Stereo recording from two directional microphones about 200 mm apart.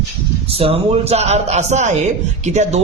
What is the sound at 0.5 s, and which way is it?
A man's voice, 30° right (ahead or behind).